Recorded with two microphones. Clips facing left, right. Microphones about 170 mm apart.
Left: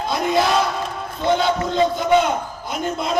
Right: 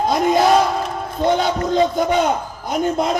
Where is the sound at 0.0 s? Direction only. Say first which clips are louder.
Right 4 dB; 45° right (ahead or behind).